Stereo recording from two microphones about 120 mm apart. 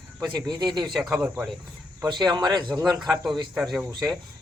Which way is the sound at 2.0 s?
35° right (ahead or behind).